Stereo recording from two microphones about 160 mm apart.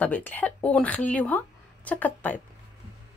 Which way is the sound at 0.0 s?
10° left (ahead or behind).